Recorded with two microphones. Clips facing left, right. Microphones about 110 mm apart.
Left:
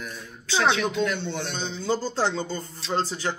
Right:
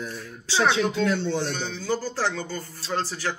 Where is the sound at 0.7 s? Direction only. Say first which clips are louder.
Right 1 dB; 20° left (ahead or behind).